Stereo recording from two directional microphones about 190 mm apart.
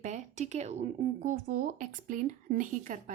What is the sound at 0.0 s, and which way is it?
Speech, 40° right (ahead or behind).